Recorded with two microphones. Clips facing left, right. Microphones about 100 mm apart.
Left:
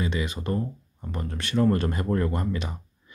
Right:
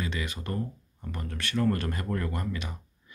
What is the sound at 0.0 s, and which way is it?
Speech, 20° left (ahead or behind).